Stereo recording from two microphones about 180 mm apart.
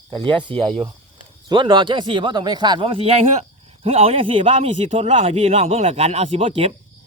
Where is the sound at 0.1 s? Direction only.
25° right (ahead or behind).